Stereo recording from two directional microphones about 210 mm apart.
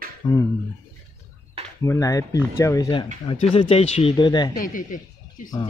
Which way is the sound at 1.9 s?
15° left (ahead or behind).